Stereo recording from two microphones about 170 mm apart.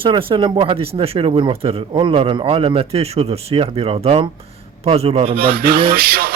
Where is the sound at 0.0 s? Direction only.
30° right (ahead or behind).